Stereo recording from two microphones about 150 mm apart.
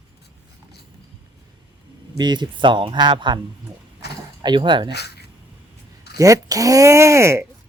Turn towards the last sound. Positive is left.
turn(degrees=-20)  # may be behind; listen again after turning